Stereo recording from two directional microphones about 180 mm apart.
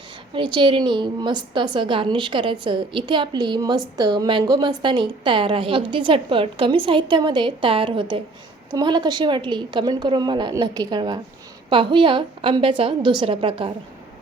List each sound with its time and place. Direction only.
0.3 s a woman's voice: 25° right (ahead or behind)